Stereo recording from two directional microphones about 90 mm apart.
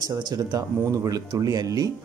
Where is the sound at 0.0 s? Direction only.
45° right (ahead or behind).